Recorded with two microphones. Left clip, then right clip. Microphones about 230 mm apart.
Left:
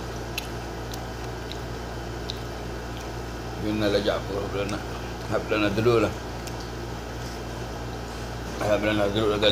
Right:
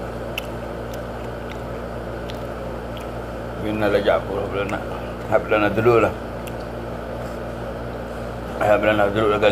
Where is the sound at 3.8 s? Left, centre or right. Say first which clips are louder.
Right 7 dB; centre.